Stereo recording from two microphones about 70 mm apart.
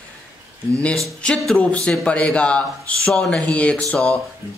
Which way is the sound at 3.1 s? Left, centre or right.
Centre.